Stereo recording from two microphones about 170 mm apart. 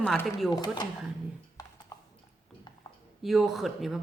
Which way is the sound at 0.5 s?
25° left (ahead or behind).